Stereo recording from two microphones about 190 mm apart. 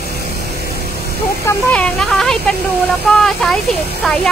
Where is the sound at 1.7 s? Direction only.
5° left (ahead or behind).